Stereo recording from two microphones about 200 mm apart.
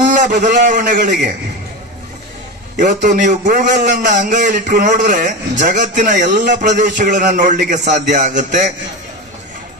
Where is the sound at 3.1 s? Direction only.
40° right (ahead or behind).